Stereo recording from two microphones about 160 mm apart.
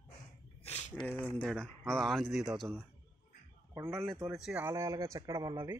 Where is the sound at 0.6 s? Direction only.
40° left (ahead or behind).